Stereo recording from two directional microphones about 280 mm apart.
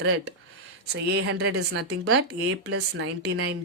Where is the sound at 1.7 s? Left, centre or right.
Right.